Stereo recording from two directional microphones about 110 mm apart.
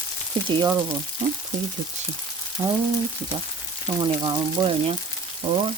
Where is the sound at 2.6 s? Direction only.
40° right (ahead or behind).